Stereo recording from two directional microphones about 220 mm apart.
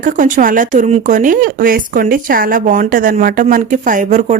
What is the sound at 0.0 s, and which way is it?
Speech, 35° right (ahead or behind).